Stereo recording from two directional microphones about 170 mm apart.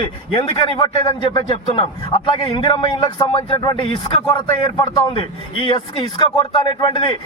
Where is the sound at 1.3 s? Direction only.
30° left (ahead or behind).